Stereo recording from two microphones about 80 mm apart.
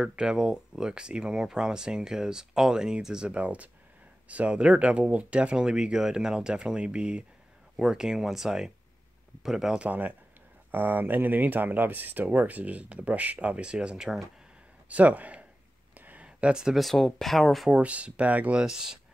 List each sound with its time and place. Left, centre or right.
0.0 s speech: centre
9.8 s speech: right
14.9 s speech: centre
17.6 s speech: centre